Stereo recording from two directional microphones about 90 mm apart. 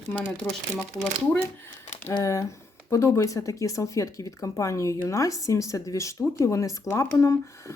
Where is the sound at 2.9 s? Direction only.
30° left (ahead or behind).